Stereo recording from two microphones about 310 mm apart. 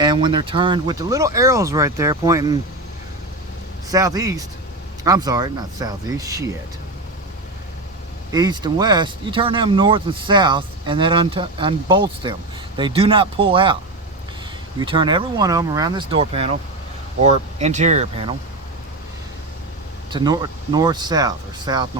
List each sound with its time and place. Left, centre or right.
0.0 s speech: centre
3.8 s speech: centre
8.3 s speech: centre
14.8 s speech: centre
20.1 s speech: centre